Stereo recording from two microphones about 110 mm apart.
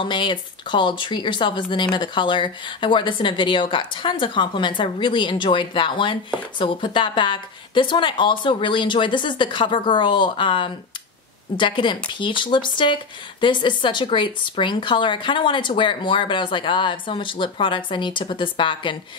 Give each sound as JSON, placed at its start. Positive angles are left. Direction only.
{"t": 0.0, "sound": "speech", "side_deg": 45}